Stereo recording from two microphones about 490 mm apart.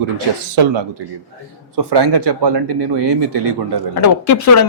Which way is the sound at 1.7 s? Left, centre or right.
Right.